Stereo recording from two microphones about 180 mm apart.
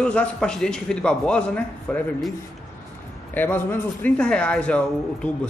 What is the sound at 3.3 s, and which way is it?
A man's voice, 10° left (ahead or behind).